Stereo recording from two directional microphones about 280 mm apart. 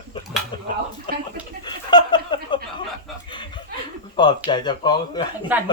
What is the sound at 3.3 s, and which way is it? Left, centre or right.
Speech, centre.